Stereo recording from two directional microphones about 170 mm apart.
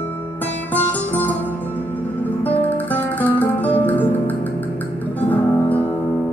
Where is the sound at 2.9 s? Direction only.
10° left (ahead or behind).